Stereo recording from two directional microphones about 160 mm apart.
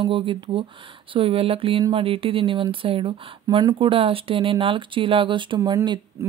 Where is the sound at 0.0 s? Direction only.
35° right (ahead or behind).